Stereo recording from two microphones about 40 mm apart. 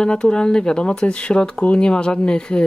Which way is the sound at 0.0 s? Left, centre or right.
Left.